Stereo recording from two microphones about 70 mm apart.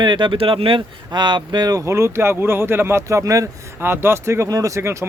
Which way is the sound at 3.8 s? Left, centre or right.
Right.